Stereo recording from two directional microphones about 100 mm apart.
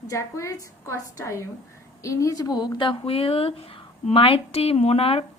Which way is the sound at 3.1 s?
70° left (ahead or behind).